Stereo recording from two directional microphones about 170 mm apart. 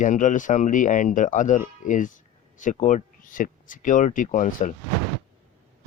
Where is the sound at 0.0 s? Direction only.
50° left (ahead or behind).